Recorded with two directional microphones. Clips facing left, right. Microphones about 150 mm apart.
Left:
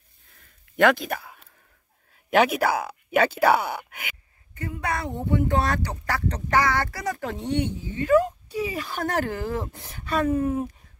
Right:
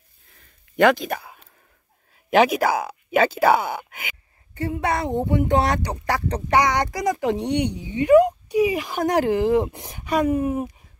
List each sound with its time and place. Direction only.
0.7 s speech: centre (ahead or behind)
4.6 s speech: 30° right (ahead or behind); by 10.7 s 10° right (ahead or behind)